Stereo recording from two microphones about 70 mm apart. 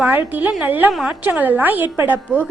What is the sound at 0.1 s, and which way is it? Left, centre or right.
Speech, right.